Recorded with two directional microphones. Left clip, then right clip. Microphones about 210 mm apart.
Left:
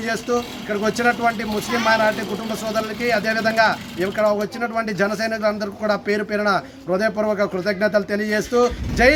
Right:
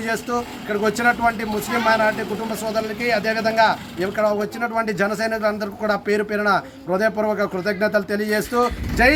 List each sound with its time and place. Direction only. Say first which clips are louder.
0.0 s speech: left 1 dB; centre (ahead or behind)